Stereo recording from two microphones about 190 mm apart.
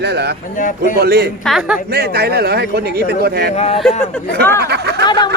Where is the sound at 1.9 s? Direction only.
55° right (ahead or behind).